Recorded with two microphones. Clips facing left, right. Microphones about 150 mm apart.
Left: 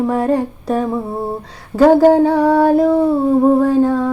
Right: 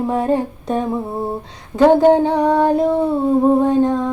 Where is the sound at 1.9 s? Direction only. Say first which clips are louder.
Left 2 dB; 20° right (ahead or behind).